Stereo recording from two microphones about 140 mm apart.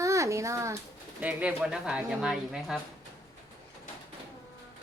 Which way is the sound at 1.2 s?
10° right (ahead or behind).